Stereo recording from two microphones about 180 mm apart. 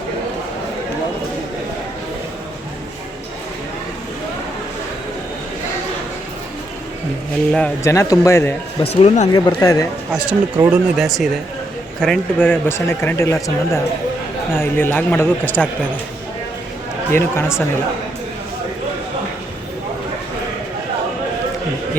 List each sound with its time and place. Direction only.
7.5 s speech: 10° left (ahead or behind)
8.8 s speech: 35° left (ahead or behind)
9.3 s speech: 20° left (ahead or behind)
10.1 s speech: 5° right (ahead or behind)
10.9 s speech: centre (ahead or behind)
17.1 s speech: 15° left (ahead or behind)